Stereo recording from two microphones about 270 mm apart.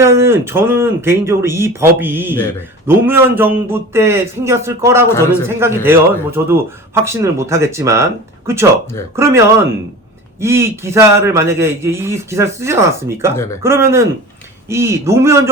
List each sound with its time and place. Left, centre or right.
0.0 s speech: centre
5.0 s a man's voice: centre
5.5 s speech: centre
13.3 s a man's voice: centre
13.6 s speech: centre